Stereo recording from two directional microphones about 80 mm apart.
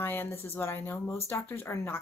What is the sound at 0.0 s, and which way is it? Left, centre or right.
Speech, left.